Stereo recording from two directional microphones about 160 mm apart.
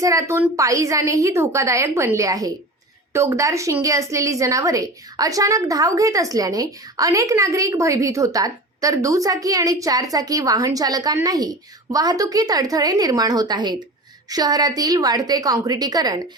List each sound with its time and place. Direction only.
0.0 s a woman's voice: 20° right (ahead or behind)